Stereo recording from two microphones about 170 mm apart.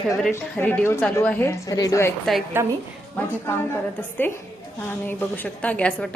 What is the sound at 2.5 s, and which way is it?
Speech, 15° right (ahead or behind).